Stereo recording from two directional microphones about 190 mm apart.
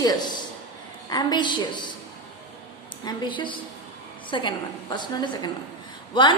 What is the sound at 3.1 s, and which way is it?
A woman's voice, 25° left (ahead or behind).